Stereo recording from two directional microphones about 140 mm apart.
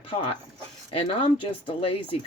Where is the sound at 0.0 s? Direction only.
40° left (ahead or behind).